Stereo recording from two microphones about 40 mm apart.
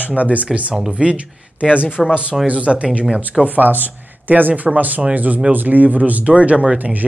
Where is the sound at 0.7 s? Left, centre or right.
Right.